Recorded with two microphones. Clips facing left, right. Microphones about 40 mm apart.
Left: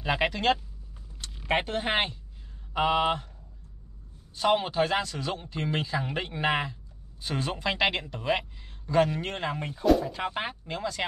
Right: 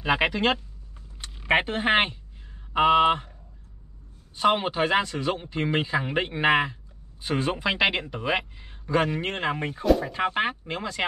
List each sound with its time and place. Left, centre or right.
0.0 s a man's voice: centre
4.4 s a man's voice: right